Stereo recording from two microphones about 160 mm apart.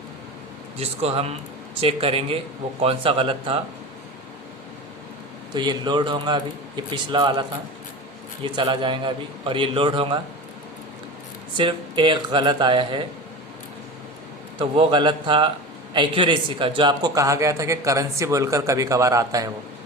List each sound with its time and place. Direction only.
0.8 s a man's voice: 40° right (ahead or behind)
5.5 s a man's voice: 30° right (ahead or behind)
8.4 s a man's voice: 30° right (ahead or behind)
11.5 s a man's voice: 30° right (ahead or behind)
14.6 s a man's voice: 30° right (ahead or behind)